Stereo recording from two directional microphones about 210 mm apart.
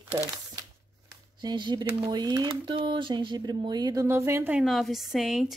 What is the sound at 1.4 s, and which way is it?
Speech, 20° right (ahead or behind).